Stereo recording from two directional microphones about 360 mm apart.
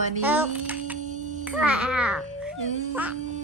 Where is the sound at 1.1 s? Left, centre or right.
Right.